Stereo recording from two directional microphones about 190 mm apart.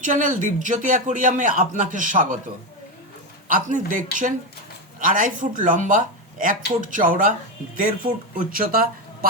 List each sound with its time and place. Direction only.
0.0 s speech: 40° right (ahead or behind)
3.5 s speech: 45° right (ahead or behind)